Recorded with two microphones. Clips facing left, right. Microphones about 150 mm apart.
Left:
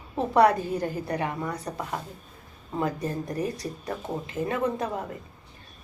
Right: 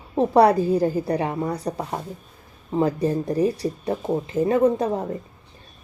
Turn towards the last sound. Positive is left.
turn(degrees=-30)  # may be behind; listen again after turning